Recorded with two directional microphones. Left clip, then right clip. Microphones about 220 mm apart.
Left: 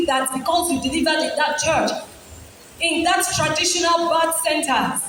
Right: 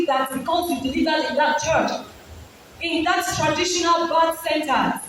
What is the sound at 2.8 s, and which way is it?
A woman's voice, 45° left (ahead or behind).